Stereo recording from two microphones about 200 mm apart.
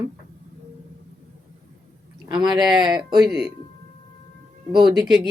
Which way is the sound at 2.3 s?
20° right (ahead or behind).